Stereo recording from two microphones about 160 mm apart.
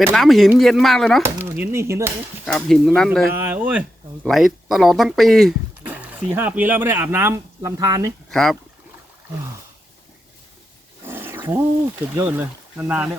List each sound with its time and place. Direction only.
0.1 s speech: centre (ahead or behind)
1.5 s speech: 15° right (ahead or behind)
2.4 s speech: centre (ahead or behind)
3.3 s speech: 10° right (ahead or behind)
8.3 s speech: centre (ahead or behind)
11.0 s roaring cats: 15° right (ahead or behind)
12.1 s speech: 15° right (ahead or behind)